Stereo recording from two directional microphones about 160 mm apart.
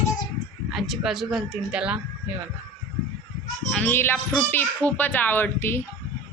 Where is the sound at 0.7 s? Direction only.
Centre (ahead or behind).